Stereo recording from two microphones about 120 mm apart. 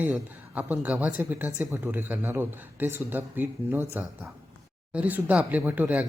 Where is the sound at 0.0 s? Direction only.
15° right (ahead or behind).